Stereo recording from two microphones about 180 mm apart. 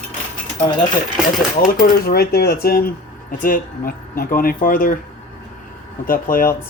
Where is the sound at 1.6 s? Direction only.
55° left (ahead or behind).